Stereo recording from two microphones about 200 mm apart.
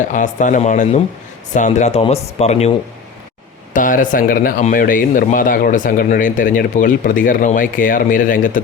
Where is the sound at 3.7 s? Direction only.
40° left (ahead or behind).